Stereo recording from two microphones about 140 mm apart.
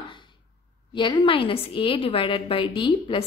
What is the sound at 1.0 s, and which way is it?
A woman's voice, 35° left (ahead or behind).